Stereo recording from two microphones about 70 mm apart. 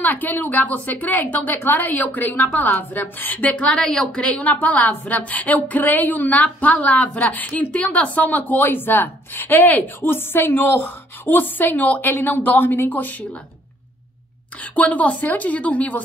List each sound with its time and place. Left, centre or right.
0.0 s a woman's voice: left
14.6 s a woman's voice: left